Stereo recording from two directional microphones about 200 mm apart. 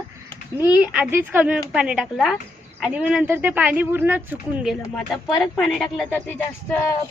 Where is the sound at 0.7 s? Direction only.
5° right (ahead or behind).